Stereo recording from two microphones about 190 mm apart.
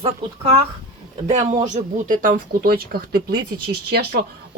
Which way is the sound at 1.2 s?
35° right (ahead or behind).